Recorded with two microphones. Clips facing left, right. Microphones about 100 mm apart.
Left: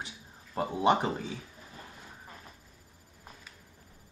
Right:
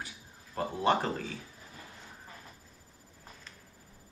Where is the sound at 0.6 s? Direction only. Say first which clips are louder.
Left 2 dB; 15° left (ahead or behind).